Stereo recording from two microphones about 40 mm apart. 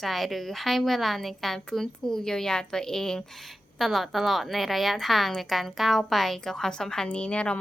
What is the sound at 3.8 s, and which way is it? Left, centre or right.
A woman's voice, centre.